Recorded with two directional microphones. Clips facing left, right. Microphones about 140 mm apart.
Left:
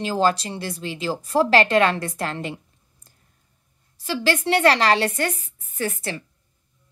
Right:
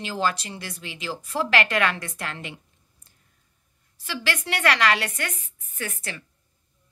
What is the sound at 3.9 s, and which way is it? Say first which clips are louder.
Speech: left 7 dB; 35° left (ahead or behind).